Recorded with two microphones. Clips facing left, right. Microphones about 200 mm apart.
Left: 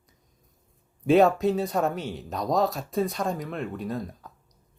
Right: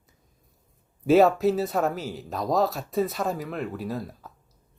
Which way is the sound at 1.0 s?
Centre (ahead or behind).